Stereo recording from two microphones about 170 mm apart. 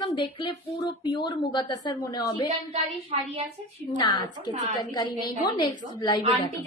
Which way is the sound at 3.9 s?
25° left (ahead or behind).